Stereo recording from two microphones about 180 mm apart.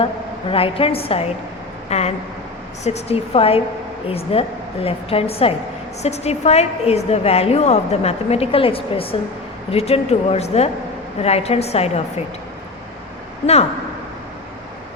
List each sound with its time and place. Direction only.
0.5 s a woman's voice: 30° left (ahead or behind)